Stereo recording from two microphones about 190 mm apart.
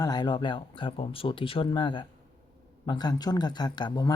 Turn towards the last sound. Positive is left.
turn(degrees=20)  # may be behind; listen again after turning